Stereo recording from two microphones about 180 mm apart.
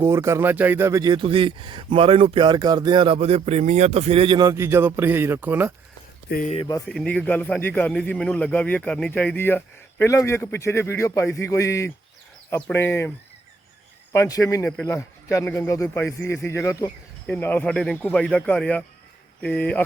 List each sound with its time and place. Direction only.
0.0 s speech: 15° right (ahead or behind)
6.2 s speech: 55° left (ahead or behind)
6.5 s speech: 30° left (ahead or behind)
6.8 s speech: 5° left (ahead or behind)